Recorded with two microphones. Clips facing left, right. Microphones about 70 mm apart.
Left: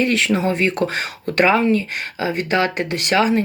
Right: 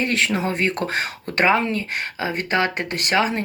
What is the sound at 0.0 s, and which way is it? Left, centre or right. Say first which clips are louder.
Speech: left 4 dB; right.